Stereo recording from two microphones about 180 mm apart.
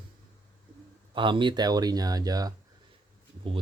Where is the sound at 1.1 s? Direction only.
25° right (ahead or behind).